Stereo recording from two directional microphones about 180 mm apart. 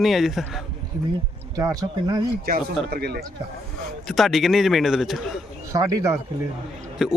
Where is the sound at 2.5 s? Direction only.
60° right (ahead or behind).